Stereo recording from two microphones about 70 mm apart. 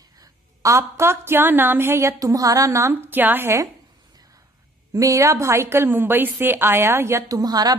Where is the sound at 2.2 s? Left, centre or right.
Right.